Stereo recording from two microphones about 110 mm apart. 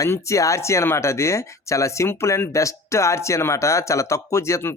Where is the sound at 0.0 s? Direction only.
30° left (ahead or behind).